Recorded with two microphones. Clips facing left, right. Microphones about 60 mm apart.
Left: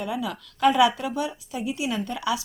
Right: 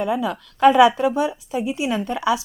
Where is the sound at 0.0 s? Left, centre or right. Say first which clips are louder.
Right 7 dB; right.